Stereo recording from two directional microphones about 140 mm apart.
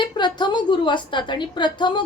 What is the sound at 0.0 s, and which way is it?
A woman's voice, 30° left (ahead or behind).